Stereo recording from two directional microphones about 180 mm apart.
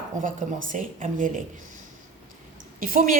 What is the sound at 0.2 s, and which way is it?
Speech, 45° right (ahead or behind).